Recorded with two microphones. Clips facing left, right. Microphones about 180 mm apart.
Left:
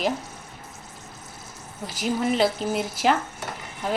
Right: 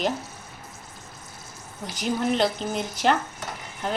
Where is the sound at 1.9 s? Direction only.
5° left (ahead or behind).